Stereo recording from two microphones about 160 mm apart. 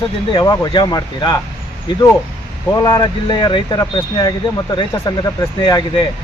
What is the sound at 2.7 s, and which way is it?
Speech, 25° left (ahead or behind).